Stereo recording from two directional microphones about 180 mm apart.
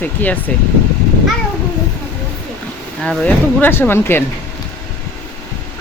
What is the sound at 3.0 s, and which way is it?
Speech, 10° left (ahead or behind).